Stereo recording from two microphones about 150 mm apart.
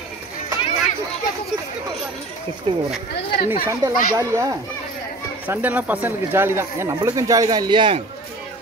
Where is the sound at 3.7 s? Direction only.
20° right (ahead or behind).